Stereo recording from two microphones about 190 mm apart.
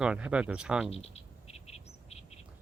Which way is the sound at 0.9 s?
30° left (ahead or behind).